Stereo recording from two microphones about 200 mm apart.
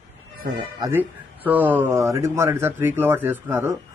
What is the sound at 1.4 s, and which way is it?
A man's voice, 10° right (ahead or behind).